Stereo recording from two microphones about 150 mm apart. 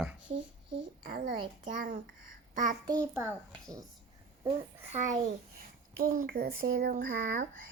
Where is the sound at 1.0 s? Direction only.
75° right (ahead or behind).